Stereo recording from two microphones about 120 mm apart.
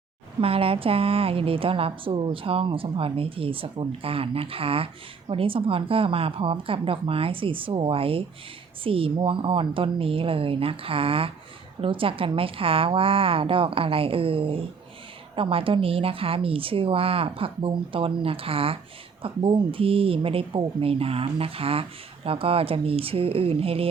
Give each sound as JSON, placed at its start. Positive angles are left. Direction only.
{"t": 0.3, "sound": "speech", "side_deg": -50}